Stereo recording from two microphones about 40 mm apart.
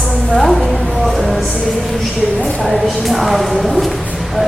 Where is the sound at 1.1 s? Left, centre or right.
Centre.